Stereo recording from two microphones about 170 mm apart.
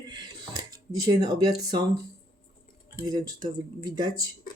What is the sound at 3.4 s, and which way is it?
Speech, 25° right (ahead or behind).